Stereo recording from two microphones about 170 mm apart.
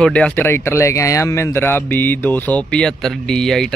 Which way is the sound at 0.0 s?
5° left (ahead or behind).